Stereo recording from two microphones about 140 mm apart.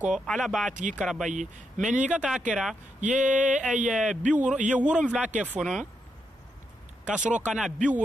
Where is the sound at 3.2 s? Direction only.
65° right (ahead or behind).